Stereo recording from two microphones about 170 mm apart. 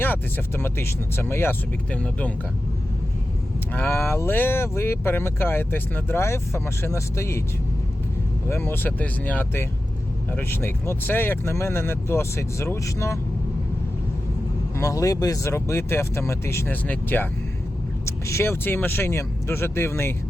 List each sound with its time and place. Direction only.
0.0 s speech: 10° left (ahead or behind)
3.7 s speech: 10° left (ahead or behind)
8.4 s speech: 15° left (ahead or behind)
14.8 s speech: 20° left (ahead or behind)